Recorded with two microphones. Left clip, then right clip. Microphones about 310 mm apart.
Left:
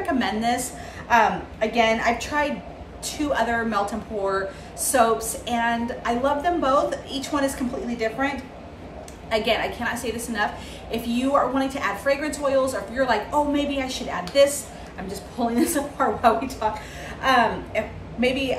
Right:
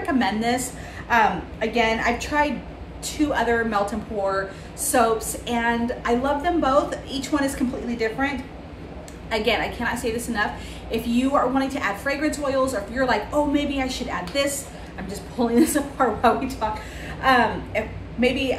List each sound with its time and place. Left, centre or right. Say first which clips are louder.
0.0 s a woman's voice: right 1 dB; centre